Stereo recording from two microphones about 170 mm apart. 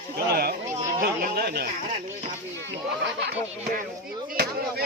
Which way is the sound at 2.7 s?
90° right.